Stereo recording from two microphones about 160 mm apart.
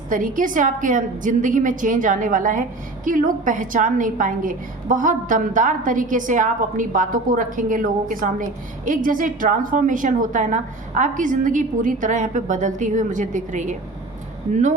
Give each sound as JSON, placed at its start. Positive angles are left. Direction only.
{"t": 0.1, "sound": "a woman's voice", "side_deg": -55}